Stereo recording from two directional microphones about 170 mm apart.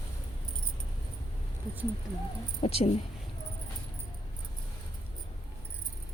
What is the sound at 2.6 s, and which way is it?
Speech, 35° left (ahead or behind).